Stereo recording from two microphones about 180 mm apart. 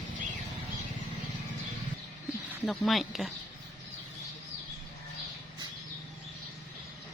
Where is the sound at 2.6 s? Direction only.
Centre (ahead or behind).